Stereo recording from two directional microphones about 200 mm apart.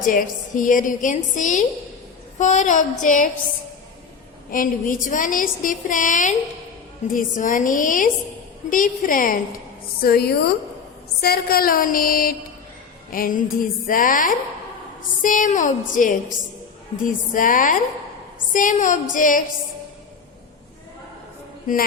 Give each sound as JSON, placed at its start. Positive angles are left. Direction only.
{"t": 0.1, "sound": "a woman's voice", "side_deg": 40}
{"t": 4.5, "sound": "a woman's voice", "side_deg": 40}